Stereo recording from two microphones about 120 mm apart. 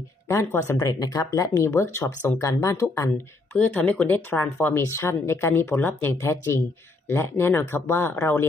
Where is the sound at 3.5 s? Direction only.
10° left (ahead or behind).